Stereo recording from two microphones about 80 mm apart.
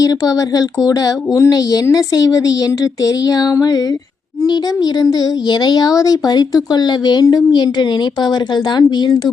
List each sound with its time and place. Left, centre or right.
0.0 s speech: left